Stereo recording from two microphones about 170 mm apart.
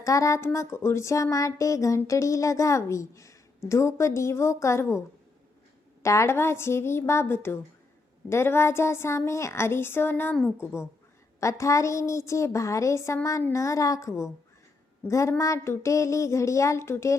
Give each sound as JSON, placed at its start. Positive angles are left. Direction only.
{"t": 0.0, "sound": "speech", "side_deg": 20}